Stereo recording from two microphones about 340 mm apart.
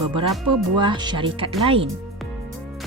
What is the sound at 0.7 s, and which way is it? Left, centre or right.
Speech, centre.